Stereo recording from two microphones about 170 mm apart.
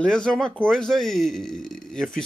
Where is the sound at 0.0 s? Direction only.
5° left (ahead or behind).